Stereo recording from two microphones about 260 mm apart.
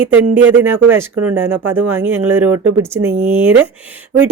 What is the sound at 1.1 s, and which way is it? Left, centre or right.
Speech, right.